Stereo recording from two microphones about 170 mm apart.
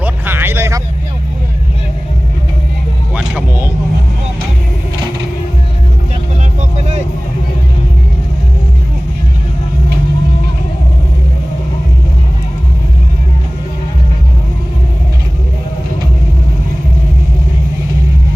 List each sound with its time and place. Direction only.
0.0 s a sound: 10° right (ahead or behind)
3.2 s music: 10° right (ahead or behind)
6.6 s vehicle: 40° right (ahead or behind)